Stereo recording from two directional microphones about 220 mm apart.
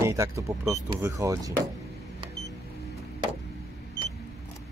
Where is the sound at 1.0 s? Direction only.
15° right (ahead or behind).